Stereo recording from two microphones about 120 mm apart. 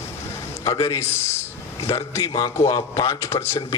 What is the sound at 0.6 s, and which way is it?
A man's voice, 25° left (ahead or behind).